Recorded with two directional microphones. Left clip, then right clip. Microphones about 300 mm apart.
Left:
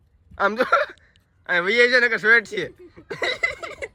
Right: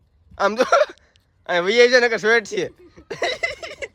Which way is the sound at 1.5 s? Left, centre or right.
Centre.